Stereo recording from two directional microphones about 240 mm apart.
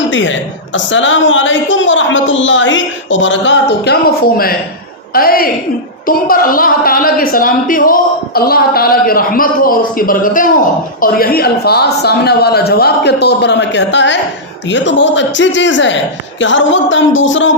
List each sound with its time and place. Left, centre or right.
0.1 s a man's voice: left
5.1 s a woman's voice: left